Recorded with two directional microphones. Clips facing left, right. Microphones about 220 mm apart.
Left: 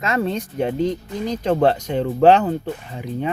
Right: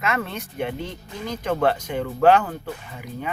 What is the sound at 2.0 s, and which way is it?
Speech, 25° left (ahead or behind).